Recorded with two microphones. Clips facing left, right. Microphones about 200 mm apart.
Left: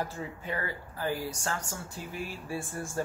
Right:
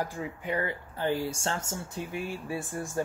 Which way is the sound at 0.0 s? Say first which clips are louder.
Right 2 dB; 15° right (ahead or behind).